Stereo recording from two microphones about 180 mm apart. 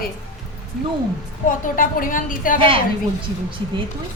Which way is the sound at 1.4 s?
50° left (ahead or behind).